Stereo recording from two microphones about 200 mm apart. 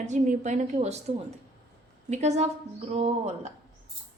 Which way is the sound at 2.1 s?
35° right (ahead or behind).